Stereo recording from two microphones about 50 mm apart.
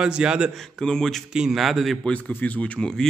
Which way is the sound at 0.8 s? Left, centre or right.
Centre.